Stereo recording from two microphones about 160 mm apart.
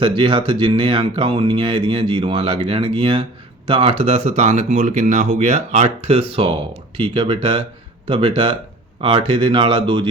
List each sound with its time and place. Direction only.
0.0 s speech: 30° right (ahead or behind)